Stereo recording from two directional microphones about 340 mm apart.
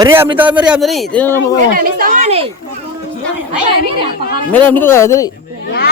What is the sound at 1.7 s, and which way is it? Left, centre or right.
Speech, right.